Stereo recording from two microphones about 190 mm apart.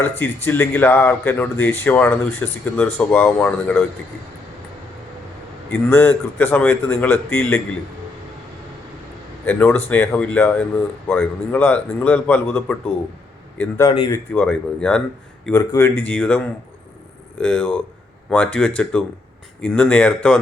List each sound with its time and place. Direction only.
0.2 s speech: 10° left (ahead or behind)
5.7 s speech: 10° left (ahead or behind)
9.5 s speech: 10° left (ahead or behind)
13.9 s speech: 25° left (ahead or behind)
14.3 s speech: 5° left (ahead or behind)